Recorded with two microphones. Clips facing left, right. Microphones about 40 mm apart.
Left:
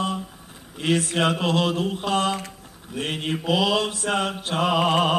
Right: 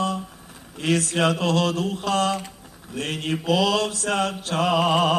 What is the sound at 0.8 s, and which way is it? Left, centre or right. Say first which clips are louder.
Mantra: even; left.